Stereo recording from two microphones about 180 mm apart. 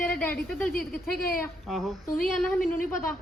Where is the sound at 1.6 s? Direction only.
Centre (ahead or behind).